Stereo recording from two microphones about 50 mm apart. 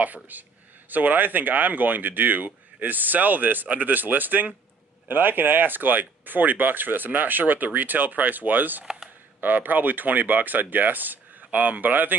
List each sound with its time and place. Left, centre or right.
0.0 s speech: right